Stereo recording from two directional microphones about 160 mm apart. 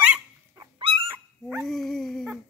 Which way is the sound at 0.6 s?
30° right (ahead or behind).